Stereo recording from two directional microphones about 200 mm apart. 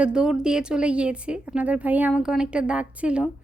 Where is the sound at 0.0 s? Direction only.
5° right (ahead or behind).